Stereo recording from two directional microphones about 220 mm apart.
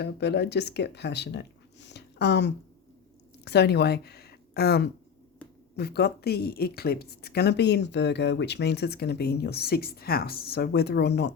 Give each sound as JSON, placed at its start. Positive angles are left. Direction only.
{"t": 0.0, "sound": "a woman's voice", "side_deg": 50}